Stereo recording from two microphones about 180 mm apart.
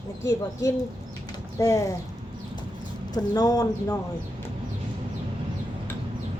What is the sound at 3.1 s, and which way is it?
Speech, 20° left (ahead or behind).